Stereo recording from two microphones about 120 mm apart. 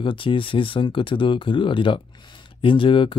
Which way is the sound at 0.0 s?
45° left (ahead or behind).